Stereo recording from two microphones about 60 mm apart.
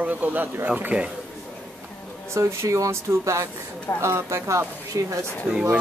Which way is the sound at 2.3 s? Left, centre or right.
Right.